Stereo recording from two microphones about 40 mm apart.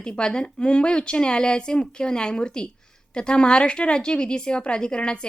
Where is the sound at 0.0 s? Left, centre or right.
Left.